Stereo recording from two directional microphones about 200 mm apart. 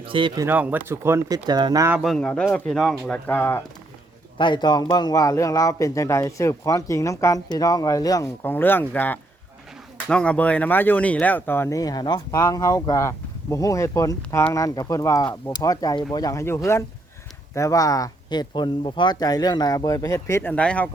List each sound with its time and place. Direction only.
0.0 s speech: 25° right (ahead or behind)
0.4 s speech: 10° right (ahead or behind)
2.0 s speech: centre (ahead or behind)
4.4 s a man's voice: 25° left (ahead or behind); by 20.9 s 5° left (ahead or behind)